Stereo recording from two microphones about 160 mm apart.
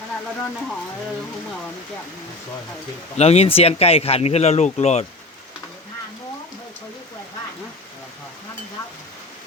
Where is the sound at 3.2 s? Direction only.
40° left (ahead or behind).